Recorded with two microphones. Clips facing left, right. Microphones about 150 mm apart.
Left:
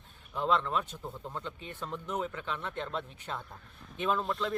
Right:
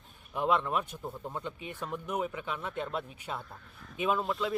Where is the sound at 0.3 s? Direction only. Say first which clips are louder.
Right 1 dB; 15° right (ahead or behind).